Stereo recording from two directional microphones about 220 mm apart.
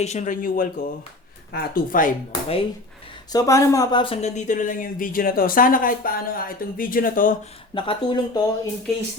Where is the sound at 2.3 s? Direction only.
25° left (ahead or behind).